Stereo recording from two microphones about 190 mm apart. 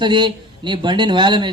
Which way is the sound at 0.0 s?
25° right (ahead or behind).